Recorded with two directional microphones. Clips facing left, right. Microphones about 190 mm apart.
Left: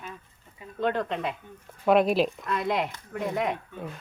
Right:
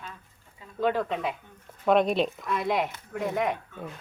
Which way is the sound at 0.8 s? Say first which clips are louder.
Right 1 dB; 5° right (ahead or behind).